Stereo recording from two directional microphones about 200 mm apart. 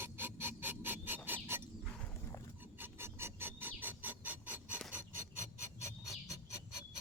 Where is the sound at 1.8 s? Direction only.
5° left (ahead or behind).